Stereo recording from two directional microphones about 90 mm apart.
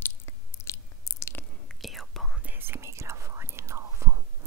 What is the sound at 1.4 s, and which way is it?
Whispering, 25° left (ahead or behind).